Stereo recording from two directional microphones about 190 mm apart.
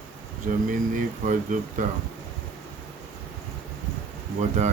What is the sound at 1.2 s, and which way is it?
Speech, 40° right (ahead or behind).